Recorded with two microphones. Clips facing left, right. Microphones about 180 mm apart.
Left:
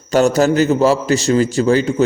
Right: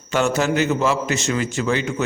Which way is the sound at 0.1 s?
40° left (ahead or behind).